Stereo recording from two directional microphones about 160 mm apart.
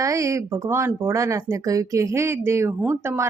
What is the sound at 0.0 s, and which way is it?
Speech, 20° right (ahead or behind).